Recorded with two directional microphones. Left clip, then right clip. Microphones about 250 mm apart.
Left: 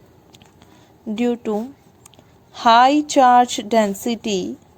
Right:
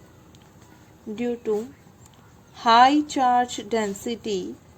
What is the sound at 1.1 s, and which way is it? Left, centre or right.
A woman's voice, left.